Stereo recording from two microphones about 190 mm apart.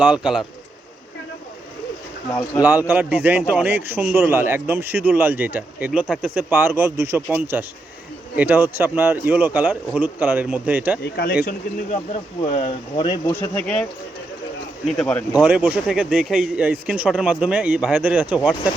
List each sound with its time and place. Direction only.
0.0 s speech: 5° right (ahead or behind)
2.6 s speech: 10° right (ahead or behind)
11.0 s speech: 55° left (ahead or behind)
11.4 s speech: 35° left (ahead or behind)
13.3 s speech: 10° left (ahead or behind)
14.8 s speech: 5° left (ahead or behind)
15.4 s speech: 10° right (ahead or behind)